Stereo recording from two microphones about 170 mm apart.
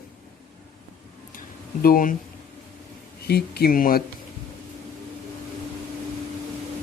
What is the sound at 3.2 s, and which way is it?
Speech, 70° left (ahead or behind).